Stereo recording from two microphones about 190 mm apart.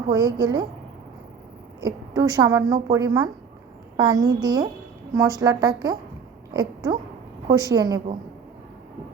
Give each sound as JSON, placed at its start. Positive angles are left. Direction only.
{"t": 0.1, "sound": "a woman's voice", "side_deg": -20}
{"t": 1.8, "sound": "a woman's voice", "side_deg": -20}